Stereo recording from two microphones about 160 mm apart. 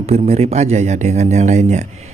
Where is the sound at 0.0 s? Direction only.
40° right (ahead or behind).